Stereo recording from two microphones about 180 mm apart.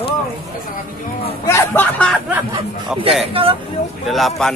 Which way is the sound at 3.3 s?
30° right (ahead or behind).